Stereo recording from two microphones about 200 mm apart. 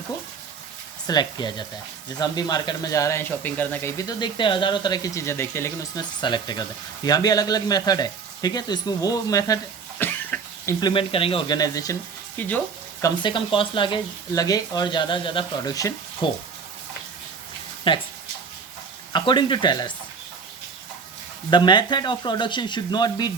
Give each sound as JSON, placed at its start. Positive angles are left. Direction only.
{"t": 1.0, "sound": "speech", "side_deg": 20}
{"t": 10.0, "sound": "cough", "side_deg": 10}
{"t": 10.8, "sound": "speech", "side_deg": 25}
{"t": 13.0, "sound": "speech", "side_deg": 25}
{"t": 17.9, "sound": "speech", "side_deg": 25}
{"t": 19.1, "sound": "speech", "side_deg": 25}
{"t": 21.5, "sound": "speech", "side_deg": 20}